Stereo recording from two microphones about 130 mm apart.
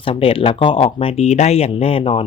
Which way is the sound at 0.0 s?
45° left (ahead or behind).